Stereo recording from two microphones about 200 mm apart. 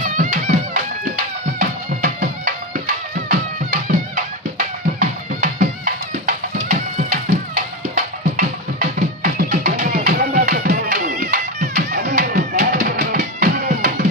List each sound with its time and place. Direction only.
0.0 s music: 40° right (ahead or behind)